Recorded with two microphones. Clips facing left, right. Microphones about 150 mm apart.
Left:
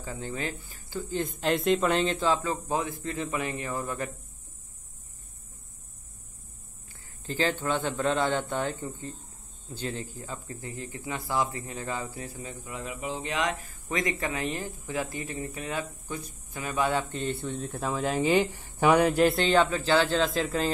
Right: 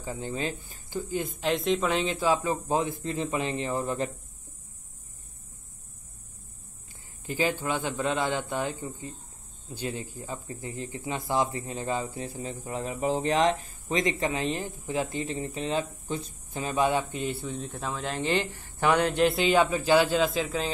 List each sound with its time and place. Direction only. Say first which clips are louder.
0.0 s speech: right 2 dB; 20° right (ahead or behind)
1.2 s speech: left 3 dB; centre (ahead or behind); by 4.1 s 25° right (ahead or behind)
7.2 s a man's voice: even; 10° right (ahead or behind)
9.8 s speech: right 1 dB; 15° right (ahead or behind)
17.2 s speech: left 1 dB; centre (ahead or behind)
20.2 s speech: left 1 dB; centre (ahead or behind)